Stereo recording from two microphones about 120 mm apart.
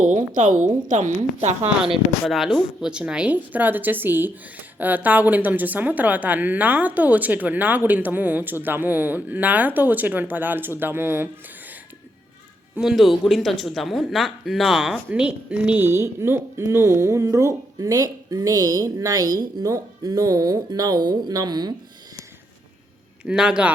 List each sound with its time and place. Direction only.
0.0 s a woman's voice: 90° right
1.6 s speech: 5° right (ahead or behind)
12.7 s speech: 5° right (ahead or behind); by 21.7 s 35° right (ahead or behind)
23.2 s speech: 5° right (ahead or behind)